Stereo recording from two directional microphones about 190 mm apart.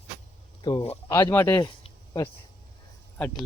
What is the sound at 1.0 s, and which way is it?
Speech, 15° left (ahead or behind).